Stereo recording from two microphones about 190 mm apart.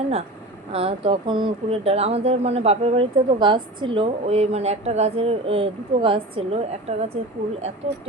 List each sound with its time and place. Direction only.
0.7 s speech: 30° right (ahead or behind)